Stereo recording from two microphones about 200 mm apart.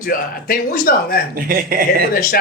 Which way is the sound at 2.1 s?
45° left (ahead or behind).